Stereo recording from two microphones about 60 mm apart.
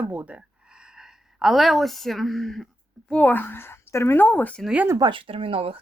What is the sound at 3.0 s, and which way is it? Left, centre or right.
Speech, centre.